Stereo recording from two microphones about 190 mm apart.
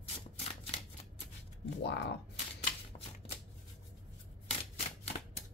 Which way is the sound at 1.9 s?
65° left (ahead or behind).